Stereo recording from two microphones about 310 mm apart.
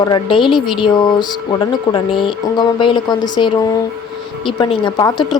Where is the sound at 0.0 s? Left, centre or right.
Centre.